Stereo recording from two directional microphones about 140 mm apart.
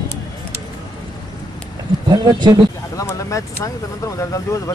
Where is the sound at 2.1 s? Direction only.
30° right (ahead or behind).